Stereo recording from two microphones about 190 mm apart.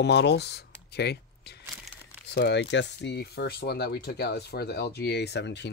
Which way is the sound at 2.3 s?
65° left (ahead or behind).